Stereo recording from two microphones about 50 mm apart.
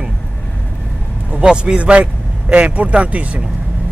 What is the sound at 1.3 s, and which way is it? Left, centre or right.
Speech, centre.